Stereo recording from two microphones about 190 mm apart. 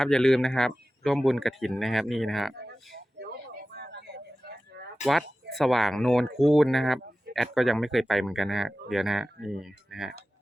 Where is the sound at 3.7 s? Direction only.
60° right (ahead or behind).